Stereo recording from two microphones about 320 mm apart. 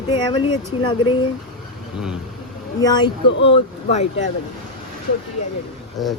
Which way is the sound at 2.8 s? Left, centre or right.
Centre.